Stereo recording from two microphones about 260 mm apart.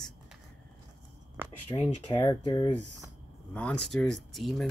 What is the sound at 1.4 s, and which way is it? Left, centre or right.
Speech, centre.